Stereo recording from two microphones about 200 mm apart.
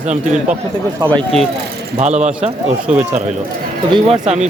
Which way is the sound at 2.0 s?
35° right (ahead or behind).